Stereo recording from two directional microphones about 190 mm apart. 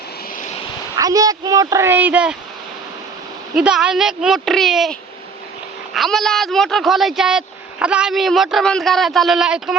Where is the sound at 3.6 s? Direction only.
5° right (ahead or behind).